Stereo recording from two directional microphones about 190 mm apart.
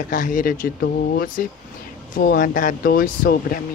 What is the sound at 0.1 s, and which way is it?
Speech, 45° left (ahead or behind).